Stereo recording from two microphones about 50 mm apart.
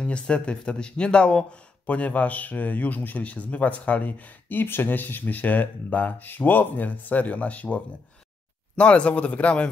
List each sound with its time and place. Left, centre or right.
0.0 s speech: left